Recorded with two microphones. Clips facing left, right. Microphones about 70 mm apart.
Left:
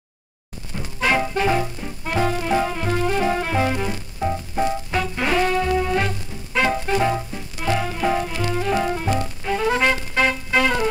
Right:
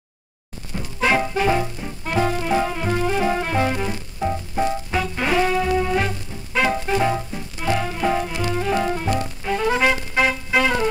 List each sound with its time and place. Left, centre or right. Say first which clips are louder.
1.0 s music: right 1 dB; centre
8.3 s music: even; centre
8.5 s music: even; centre